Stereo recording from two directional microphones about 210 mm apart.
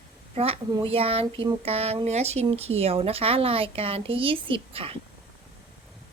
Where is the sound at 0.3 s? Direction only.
25° right (ahead or behind).